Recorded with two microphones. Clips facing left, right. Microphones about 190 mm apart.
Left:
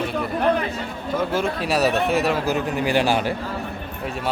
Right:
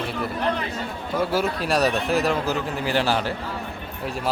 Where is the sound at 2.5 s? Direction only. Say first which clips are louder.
Left 3 dB; 15° left (ahead or behind).